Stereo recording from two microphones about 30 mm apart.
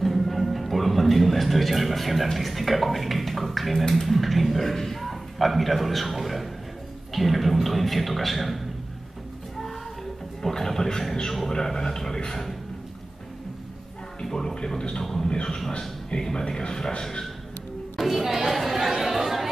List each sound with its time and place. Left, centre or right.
0.0 s music: centre
2.3 s speech: centre
10.5 s speech: centre
14.4 s a man's voice: left
17.9 s chatter: centre